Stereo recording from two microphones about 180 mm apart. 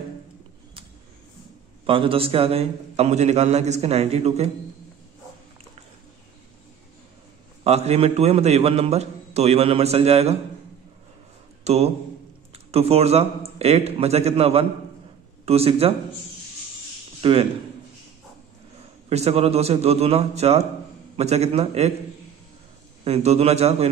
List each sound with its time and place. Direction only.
1.9 s a man's voice: 30° right (ahead or behind)
7.6 s a man's voice: 35° right (ahead or behind)
11.6 s a man's voice: 35° right (ahead or behind)
17.2 s a man's voice: 30° right (ahead or behind)
19.0 s a man's voice: 35° right (ahead or behind)
23.0 s a man's voice: 35° right (ahead or behind)